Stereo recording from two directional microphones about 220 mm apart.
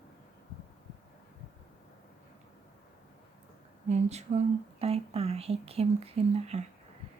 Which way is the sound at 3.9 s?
30° right (ahead or behind).